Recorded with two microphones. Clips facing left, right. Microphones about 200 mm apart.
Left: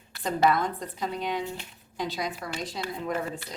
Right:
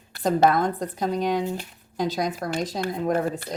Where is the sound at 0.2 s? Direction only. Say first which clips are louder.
Right 5 dB; 45° right (ahead or behind).